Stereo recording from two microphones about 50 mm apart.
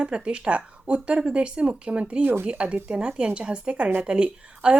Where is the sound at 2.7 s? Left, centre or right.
Right.